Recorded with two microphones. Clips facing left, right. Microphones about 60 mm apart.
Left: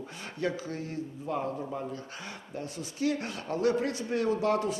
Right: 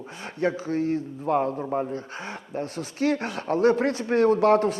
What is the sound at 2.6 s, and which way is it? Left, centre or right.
Speech, right.